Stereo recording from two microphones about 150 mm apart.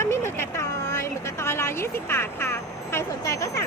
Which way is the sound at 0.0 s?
20° left (ahead or behind).